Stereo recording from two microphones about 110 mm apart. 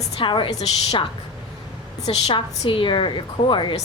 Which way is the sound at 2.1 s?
55° left (ahead or behind).